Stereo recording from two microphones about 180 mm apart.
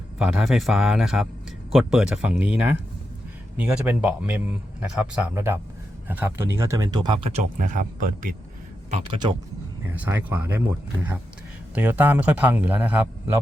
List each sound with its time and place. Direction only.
0.2 s a man's voice: 5° right (ahead or behind); by 8.4 s 50° right (ahead or behind)
8.9 s speech: 30° right (ahead or behind)
9.9 s speech: 10° right (ahead or behind)